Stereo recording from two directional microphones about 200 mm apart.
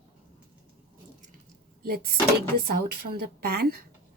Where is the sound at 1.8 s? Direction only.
50° right (ahead or behind).